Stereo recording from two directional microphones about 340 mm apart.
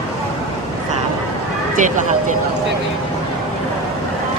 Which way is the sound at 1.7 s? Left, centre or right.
Right.